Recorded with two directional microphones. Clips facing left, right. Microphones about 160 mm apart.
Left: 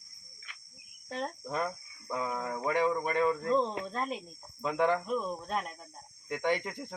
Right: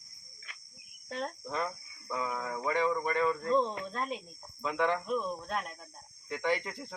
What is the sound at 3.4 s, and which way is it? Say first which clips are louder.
Speech: even; 5° left (ahead or behind).